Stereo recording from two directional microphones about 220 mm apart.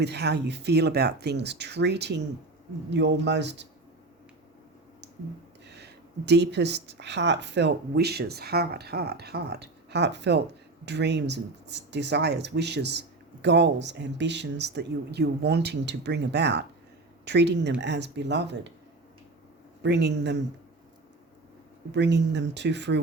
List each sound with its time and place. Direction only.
0.0 s speech: 50° right (ahead or behind)
5.6 s speech: 50° right (ahead or behind)
19.8 s speech: 50° right (ahead or behind)
21.9 s speech: 50° right (ahead or behind)